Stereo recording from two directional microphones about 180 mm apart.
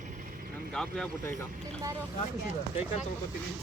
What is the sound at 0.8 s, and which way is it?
Speech, 5° left (ahead or behind).